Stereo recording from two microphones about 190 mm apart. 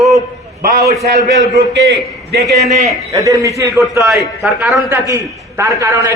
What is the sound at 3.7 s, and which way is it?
Speech, centre (ahead or behind).